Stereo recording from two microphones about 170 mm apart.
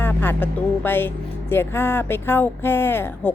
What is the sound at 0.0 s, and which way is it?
Speech, 10° left (ahead or behind).